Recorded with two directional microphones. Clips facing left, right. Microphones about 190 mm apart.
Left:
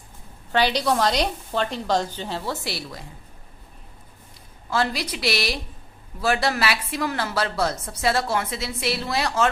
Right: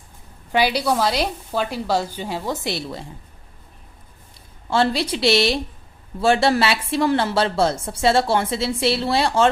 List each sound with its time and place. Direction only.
0.5 s a woman's voice: 10° right (ahead or behind); by 3.0 s 25° right (ahead or behind)
4.7 s speech: 30° right (ahead or behind)